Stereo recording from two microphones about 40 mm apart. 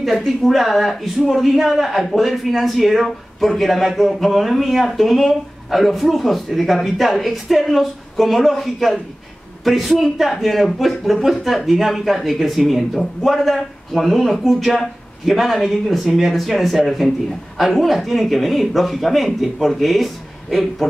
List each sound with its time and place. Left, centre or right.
0.0 s speech: centre